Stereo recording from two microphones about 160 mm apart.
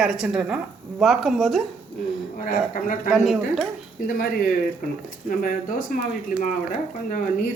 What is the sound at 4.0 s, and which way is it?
Speech, 60° left (ahead or behind).